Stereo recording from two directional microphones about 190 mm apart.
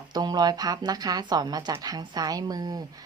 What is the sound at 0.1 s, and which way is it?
Speech, 20° right (ahead or behind).